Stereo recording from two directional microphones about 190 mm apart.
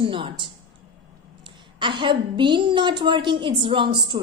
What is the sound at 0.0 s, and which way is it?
A woman's voice, 25° right (ahead or behind).